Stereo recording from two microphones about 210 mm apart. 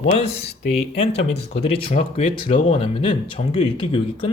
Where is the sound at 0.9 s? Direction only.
30° left (ahead or behind).